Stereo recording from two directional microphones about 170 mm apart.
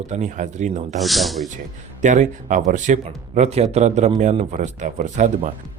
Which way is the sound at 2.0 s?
45° right (ahead or behind).